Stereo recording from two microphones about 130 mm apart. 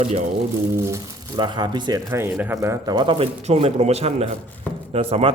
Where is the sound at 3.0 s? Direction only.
40° right (ahead or behind).